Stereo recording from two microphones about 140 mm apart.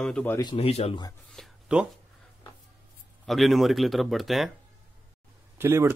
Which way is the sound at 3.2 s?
Centre (ahead or behind).